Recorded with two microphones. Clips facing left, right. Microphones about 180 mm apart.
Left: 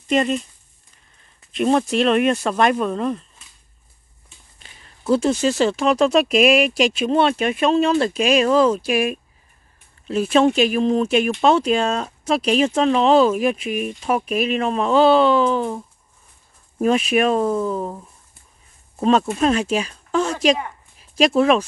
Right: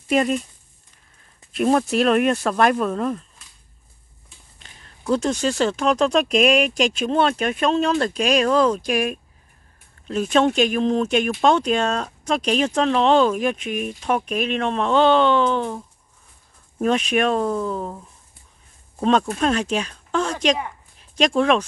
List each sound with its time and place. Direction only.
0.1 s speech: 5° right (ahead or behind)
1.5 s speech: centre (ahead or behind)
5.0 s speech: 5° left (ahead or behind)